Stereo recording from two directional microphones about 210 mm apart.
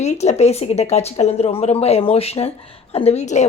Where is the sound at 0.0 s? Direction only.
30° left (ahead or behind).